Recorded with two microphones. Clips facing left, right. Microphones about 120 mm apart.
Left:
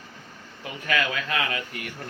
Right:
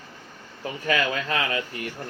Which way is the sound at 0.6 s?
35° right (ahead or behind).